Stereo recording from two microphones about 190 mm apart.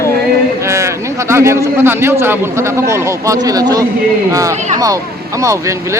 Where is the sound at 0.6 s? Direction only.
15° right (ahead or behind).